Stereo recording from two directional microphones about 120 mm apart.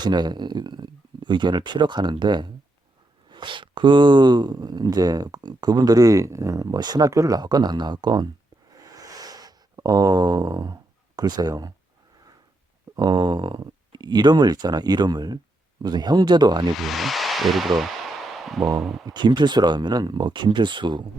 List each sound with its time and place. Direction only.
0.0 s speech: 35° right (ahead or behind)
8.8 s a sound: 30° right (ahead or behind)
11.2 s speech: 30° right (ahead or behind)
13.0 s speech: 40° right (ahead or behind)
16.7 s speech: centre (ahead or behind)
18.3 s a sound: centre (ahead or behind)
19.0 s speech: 40° right (ahead or behind)